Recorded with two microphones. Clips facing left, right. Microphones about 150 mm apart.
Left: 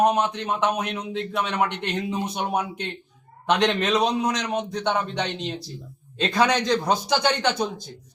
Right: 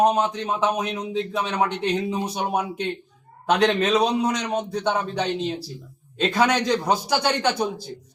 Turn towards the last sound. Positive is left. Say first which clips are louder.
# right 1 dB
turn(degrees=-10)  # may be behind; listen again after turning